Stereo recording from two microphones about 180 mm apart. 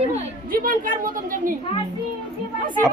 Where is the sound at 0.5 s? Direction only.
50° right (ahead or behind).